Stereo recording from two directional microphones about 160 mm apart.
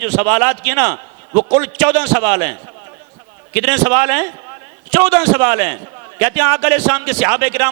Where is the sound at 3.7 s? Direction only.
20° right (ahead or behind).